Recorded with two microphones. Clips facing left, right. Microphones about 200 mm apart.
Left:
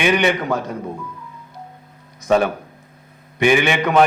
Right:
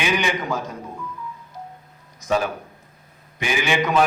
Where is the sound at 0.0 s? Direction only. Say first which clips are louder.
Left 6 dB; 65° left (ahead or behind).